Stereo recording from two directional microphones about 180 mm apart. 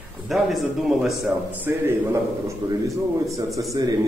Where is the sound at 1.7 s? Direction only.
15° right (ahead or behind).